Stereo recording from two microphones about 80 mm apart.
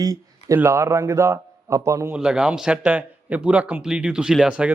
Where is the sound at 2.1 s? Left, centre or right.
Centre.